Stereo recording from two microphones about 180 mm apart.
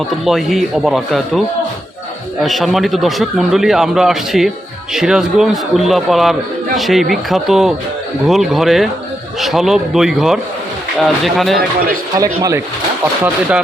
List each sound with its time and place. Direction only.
0.1 s a man's voice: centre (ahead or behind)
12.1 s speech: 20° right (ahead or behind)